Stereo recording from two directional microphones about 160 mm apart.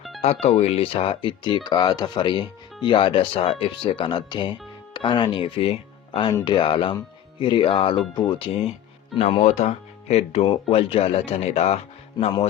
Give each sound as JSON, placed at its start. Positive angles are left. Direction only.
{"t": 0.2, "sound": "speech", "side_deg": 40}